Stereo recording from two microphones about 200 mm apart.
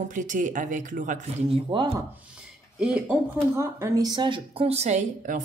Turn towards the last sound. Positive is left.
turn(degrees=-35)  # may be behind; listen again after turning